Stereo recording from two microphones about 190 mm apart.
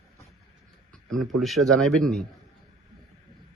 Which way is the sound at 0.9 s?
5° left (ahead or behind).